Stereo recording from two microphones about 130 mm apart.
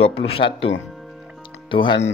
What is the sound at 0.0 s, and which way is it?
Speech, 45° left (ahead or behind).